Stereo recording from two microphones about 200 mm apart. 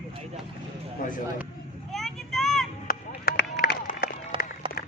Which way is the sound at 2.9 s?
50° left (ahead or behind).